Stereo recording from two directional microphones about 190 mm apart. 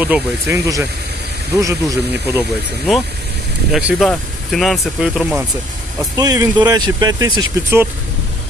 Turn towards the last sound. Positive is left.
turn(degrees=-15)  # may be behind; listen again after turning